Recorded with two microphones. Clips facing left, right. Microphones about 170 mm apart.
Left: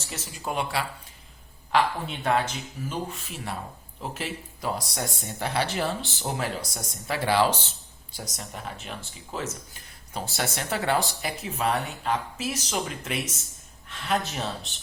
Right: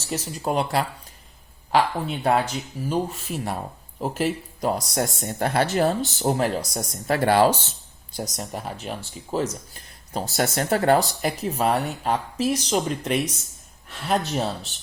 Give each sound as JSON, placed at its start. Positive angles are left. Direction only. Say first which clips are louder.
{"t": 0.1, "sound": "speech", "louder": "right 7 dB", "side_deg": -40}